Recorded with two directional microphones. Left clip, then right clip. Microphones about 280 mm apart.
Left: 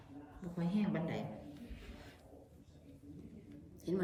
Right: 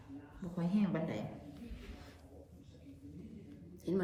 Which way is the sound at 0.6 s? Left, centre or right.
Centre.